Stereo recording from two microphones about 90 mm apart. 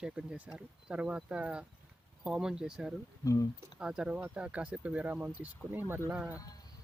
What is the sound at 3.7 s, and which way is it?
Speech, 10° right (ahead or behind).